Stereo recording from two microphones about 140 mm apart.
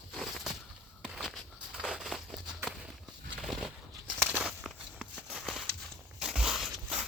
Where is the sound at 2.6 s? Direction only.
5° right (ahead or behind).